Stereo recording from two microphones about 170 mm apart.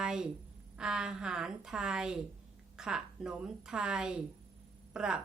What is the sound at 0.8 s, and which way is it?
A woman's voice, 5° right (ahead or behind).